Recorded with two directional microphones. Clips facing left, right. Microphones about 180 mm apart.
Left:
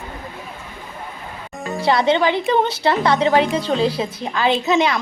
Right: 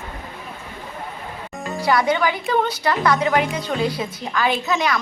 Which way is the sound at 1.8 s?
25° left (ahead or behind).